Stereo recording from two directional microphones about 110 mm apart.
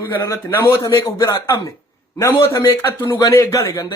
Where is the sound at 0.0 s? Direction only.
20° left (ahead or behind).